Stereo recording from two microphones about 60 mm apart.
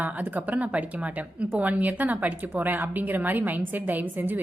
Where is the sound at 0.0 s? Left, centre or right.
Right.